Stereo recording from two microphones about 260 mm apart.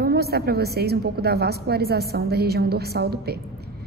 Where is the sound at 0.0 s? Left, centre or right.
Right.